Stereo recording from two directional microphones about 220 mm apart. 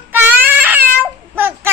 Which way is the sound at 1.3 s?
10° right (ahead or behind).